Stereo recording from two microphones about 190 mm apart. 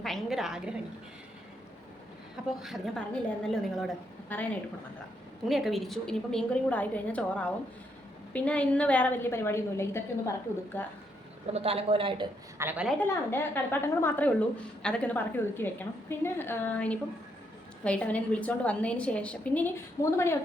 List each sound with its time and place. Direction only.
0.0 s a woman's voice: centre (ahead or behind)
2.6 s a woman's voice: centre (ahead or behind)
5.5 s a woman's voice: centre (ahead or behind)
11.5 s speech: 30° right (ahead or behind)
12.5 s a woman's voice: 10° right (ahead or behind)
13.0 s a woman's voice: 10° left (ahead or behind)